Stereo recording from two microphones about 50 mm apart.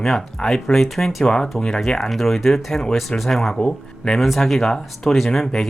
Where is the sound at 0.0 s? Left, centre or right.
Centre.